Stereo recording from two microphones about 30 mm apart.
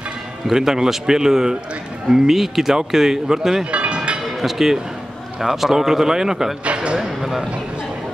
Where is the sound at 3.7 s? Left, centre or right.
Right.